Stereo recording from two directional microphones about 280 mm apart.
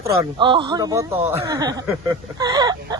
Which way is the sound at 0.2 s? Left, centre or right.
Centre.